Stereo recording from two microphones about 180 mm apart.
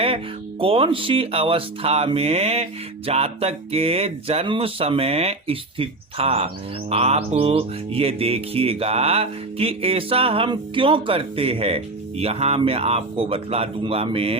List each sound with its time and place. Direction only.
0.6 s music: 30° right (ahead or behind)